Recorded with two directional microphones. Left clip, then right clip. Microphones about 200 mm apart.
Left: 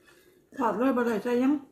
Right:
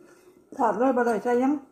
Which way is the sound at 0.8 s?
25° left (ahead or behind).